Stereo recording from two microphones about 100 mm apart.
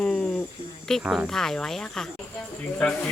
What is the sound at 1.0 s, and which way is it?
Speech, 10° right (ahead or behind).